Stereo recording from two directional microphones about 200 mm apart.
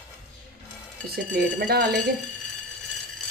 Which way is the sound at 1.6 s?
55° right (ahead or behind).